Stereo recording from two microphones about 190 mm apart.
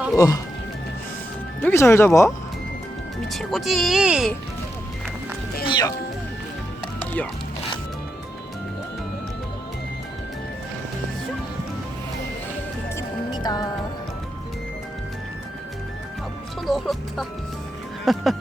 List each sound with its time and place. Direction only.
0.2 s speech: 20° left (ahead or behind)
1.6 s speech: 15° left (ahead or behind)
3.2 s speech: centre (ahead or behind)
5.6 s speech: 25° left (ahead or behind)
7.0 s music: 10° left (ahead or behind)
13.0 s music: 20° left (ahead or behind)
16.6 s speech: centre (ahead or behind)